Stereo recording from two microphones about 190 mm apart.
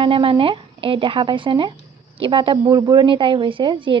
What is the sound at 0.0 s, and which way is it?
Speech, 30° right (ahead or behind).